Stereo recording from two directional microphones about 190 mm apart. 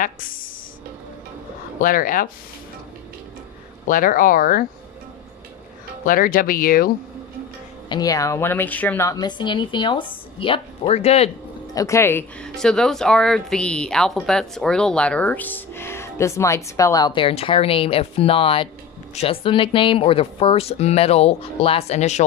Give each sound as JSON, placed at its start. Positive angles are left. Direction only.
{"t": 0.0, "sound": "speech", "side_deg": 45}
{"t": 1.8, "sound": "speech", "side_deg": 45}
{"t": 3.8, "sound": "speech", "side_deg": 45}
{"t": 6.0, "sound": "speech", "side_deg": 45}
{"t": 7.9, "sound": "a woman's voice", "side_deg": 20}
{"t": 11.7, "sound": "a woman's voice", "side_deg": 15}